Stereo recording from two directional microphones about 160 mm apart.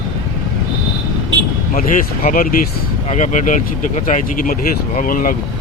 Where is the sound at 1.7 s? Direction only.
55° left (ahead or behind).